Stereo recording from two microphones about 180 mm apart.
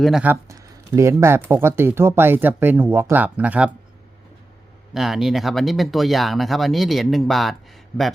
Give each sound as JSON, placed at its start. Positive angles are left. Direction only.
{"t": 0.0, "sound": "speech", "side_deg": -5}
{"t": 4.9, "sound": "speech", "side_deg": 0}